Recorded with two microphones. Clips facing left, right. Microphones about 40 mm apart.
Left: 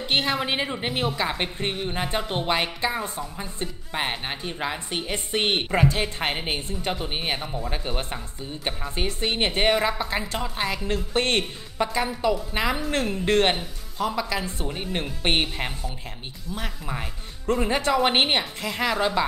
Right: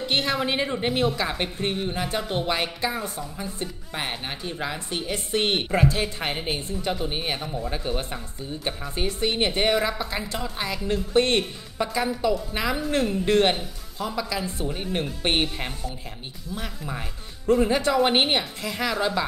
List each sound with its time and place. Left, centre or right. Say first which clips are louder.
0.0 s a woman's voice: even; centre
5.9 s a woman's voice: left 1 dB; left
10.9 s a woman's voice: right 5 dB; left
11.8 s a woman's voice: even; centre